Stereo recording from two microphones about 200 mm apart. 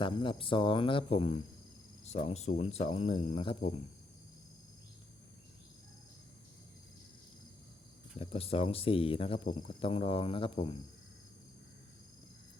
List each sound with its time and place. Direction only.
0.0 s speech: 25° left (ahead or behind)
8.2 s speech: 30° left (ahead or behind)